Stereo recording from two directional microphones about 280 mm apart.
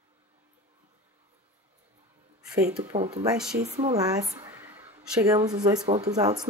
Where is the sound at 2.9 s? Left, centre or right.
Right.